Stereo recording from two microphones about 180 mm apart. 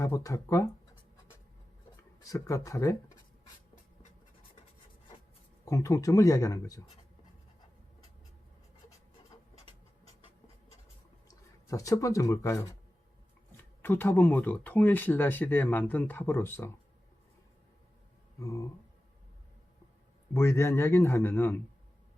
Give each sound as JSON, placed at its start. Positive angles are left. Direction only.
{"t": 0.0, "sound": "speech", "side_deg": 20}
{"t": 2.2, "sound": "speech", "side_deg": 20}
{"t": 5.6, "sound": "speech", "side_deg": 15}
{"t": 11.7, "sound": "speech", "side_deg": 20}
{"t": 13.8, "sound": "speech", "side_deg": 10}
{"t": 20.3, "sound": "speech", "side_deg": 15}